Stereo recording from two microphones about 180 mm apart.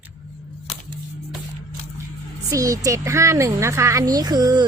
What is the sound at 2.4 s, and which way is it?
Speech, 20° right (ahead or behind).